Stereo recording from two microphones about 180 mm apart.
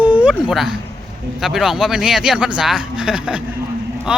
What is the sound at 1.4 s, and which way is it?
Speech, centre (ahead or behind).